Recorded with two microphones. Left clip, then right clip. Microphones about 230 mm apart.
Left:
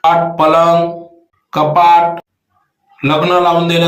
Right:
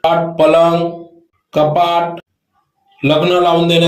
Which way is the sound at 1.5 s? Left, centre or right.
Left.